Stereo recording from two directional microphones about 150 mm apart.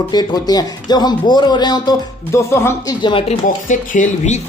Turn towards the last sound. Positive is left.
turn(degrees=55)  # may be behind; listen again after turning